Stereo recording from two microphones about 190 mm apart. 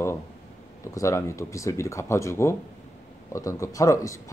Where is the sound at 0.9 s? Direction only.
15° left (ahead or behind).